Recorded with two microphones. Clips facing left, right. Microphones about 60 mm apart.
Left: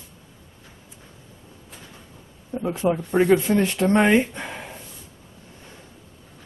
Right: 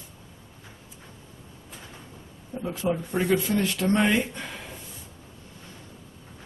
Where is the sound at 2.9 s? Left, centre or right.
Left.